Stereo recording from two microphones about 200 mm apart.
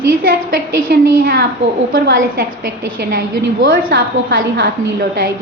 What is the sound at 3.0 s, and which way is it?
A woman's voice, 55° right (ahead or behind).